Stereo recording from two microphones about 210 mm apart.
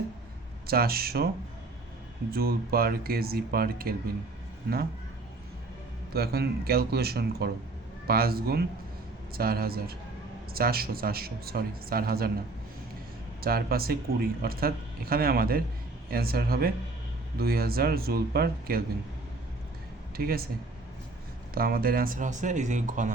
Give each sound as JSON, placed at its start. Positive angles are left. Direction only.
{"t": 0.7, "sound": "speech", "side_deg": -45}
{"t": 2.3, "sound": "speech", "side_deg": -45}
{"t": 6.1, "sound": "speech", "side_deg": -50}
{"t": 13.4, "sound": "speech", "side_deg": -45}
{"t": 20.1, "sound": "speech", "side_deg": -45}
{"t": 21.5, "sound": "speech", "side_deg": -45}